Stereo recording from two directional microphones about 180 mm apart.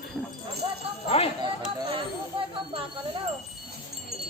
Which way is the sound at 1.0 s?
35° left (ahead or behind).